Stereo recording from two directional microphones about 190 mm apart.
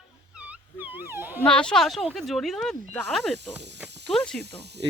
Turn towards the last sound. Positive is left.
turn(degrees=-60)  # may be behind; listen again after turning